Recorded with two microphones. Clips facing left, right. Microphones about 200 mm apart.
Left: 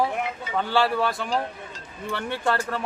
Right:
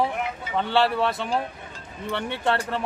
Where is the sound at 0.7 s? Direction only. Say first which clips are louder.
Right 1 dB; centre (ahead or behind).